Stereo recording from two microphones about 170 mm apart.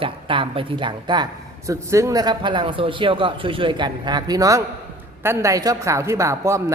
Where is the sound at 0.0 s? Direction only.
30° right (ahead or behind).